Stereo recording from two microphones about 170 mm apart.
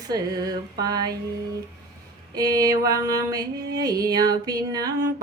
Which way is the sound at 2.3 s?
20° right (ahead or behind).